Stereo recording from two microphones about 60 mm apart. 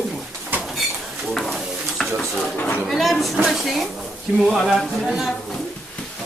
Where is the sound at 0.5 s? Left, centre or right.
Right.